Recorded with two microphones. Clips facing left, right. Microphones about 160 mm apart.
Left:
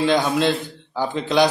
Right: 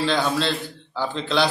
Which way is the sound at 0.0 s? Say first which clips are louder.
Left 4 dB; 15° left (ahead or behind).